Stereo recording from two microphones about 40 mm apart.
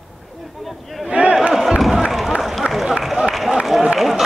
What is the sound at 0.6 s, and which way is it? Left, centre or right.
Speech, centre.